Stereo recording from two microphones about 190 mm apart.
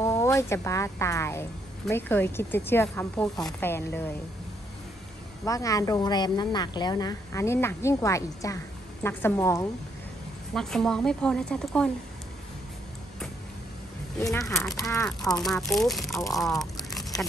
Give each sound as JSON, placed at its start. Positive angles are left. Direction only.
{"t": 0.0, "sound": "a woman's voice", "side_deg": 15}
{"t": 5.4, "sound": "a woman's voice", "side_deg": 15}
{"t": 10.5, "sound": "a woman's voice", "side_deg": 5}
{"t": 14.4, "sound": "a woman's voice", "side_deg": 0}
{"t": 16.3, "sound": "a sound", "side_deg": 0}